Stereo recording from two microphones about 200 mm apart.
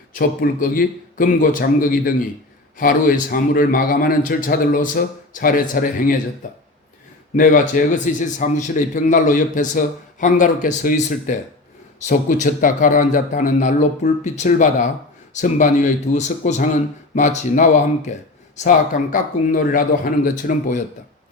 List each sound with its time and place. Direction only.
0.1 s a man's voice: 45° left (ahead or behind)